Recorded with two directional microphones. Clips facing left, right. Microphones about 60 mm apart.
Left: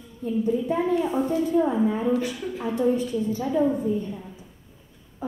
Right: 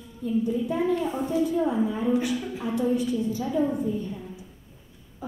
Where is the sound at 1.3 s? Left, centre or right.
Left.